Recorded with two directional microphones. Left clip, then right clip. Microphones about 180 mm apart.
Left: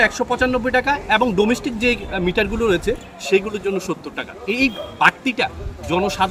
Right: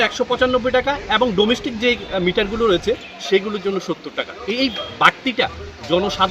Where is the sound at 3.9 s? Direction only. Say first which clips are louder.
Right 2 dB; 25° left (ahead or behind).